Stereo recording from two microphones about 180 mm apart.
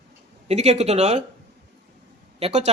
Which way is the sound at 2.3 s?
35° right (ahead or behind).